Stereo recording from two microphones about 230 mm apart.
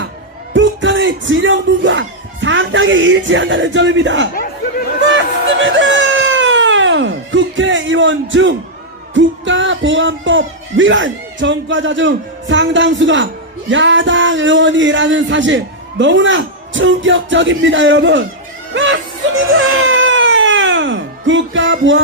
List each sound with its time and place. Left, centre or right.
0.5 s speech: right
5.1 s baby cry: right
9.1 s speech: right
19.5 s baby cry: right